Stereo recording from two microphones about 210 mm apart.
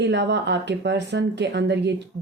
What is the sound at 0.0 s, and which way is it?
Speech, 55° right (ahead or behind).